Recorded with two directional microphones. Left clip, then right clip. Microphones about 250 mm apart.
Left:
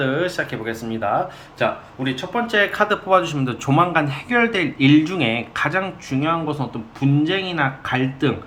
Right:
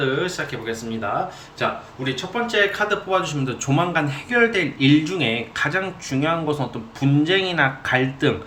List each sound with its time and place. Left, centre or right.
0.0 s speech: centre